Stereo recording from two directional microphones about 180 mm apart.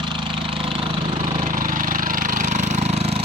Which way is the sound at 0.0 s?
25° right (ahead or behind).